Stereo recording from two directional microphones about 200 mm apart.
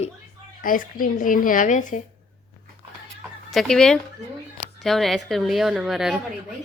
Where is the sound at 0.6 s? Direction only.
45° left (ahead or behind).